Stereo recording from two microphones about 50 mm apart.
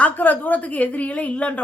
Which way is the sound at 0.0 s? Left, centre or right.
Left.